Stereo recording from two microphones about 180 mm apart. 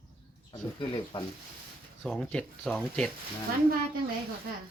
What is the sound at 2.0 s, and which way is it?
Speech, 5° left (ahead or behind).